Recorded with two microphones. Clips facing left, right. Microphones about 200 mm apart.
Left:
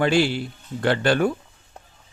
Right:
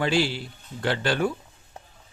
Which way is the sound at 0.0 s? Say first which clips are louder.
Left 4 dB; 55° left (ahead or behind).